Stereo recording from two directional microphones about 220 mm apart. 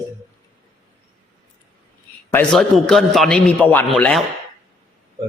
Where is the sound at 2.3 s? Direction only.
5° left (ahead or behind).